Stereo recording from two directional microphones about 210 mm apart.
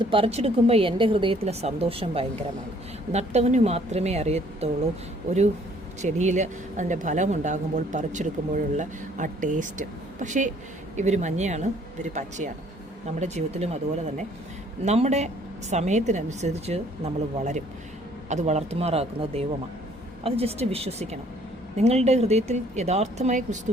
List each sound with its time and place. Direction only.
0.0 s speech: 25° right (ahead or behind)
6.0 s speech: 35° right (ahead or behind)